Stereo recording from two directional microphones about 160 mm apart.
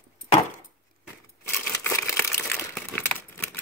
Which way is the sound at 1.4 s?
15° left (ahead or behind).